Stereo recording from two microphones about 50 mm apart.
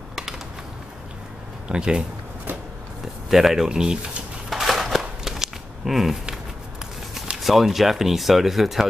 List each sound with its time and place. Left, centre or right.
0.1 s typing: centre
1.7 s speech: centre
3.3 s speech: centre
4.5 s a sound: centre
7.3 s speech: centre